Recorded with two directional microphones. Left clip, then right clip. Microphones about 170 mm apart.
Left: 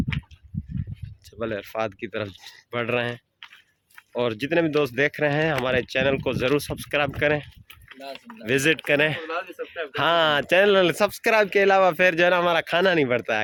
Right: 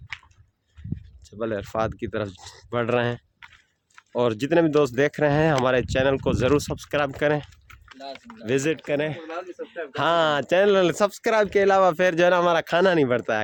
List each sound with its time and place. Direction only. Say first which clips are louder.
1.3 s speech: right 1 dB; 30° right (ahead or behind)
1.6 s speech: right 2 dB; 40° right (ahead or behind)
7.9 s speech: even; 30° left (ahead or behind)
8.4 s speech: left 3 dB; 15° right (ahead or behind)
9.2 s speech: left 3 dB; 20° left (ahead or behind)
9.9 s speech: left 1 dB; 25° right (ahead or behind)